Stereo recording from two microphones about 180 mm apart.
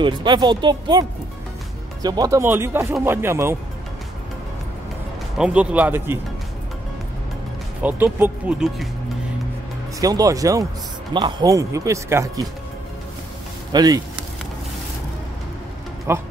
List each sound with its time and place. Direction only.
0.0 s speech: 25° right (ahead or behind)
2.0 s speech: 20° right (ahead or behind)
5.4 s speech: 5° right (ahead or behind)
7.8 s speech: 10° right (ahead or behind)
9.9 s speech: 20° right (ahead or behind)
13.7 s speech: 20° right (ahead or behind)
16.1 s speech: 15° right (ahead or behind)